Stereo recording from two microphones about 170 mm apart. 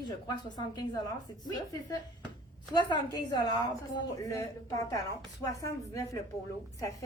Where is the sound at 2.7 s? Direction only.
25° left (ahead or behind).